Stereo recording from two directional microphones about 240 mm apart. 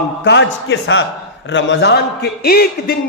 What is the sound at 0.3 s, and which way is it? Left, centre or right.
A man's voice, left.